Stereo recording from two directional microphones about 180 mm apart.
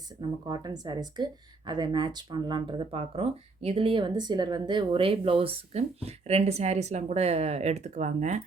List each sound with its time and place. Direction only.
0.2 s speech: 20° right (ahead or behind); by 8.4 s 40° right (ahead or behind)